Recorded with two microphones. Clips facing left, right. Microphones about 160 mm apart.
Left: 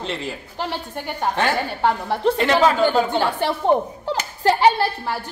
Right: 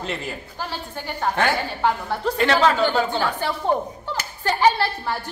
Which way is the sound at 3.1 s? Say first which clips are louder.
Left 3 dB; 25° left (ahead or behind).